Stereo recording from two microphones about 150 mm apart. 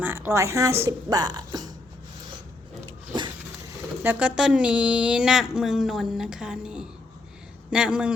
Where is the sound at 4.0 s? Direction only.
10° right (ahead or behind).